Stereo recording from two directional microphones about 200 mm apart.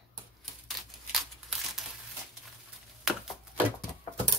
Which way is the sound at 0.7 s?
Centre (ahead or behind).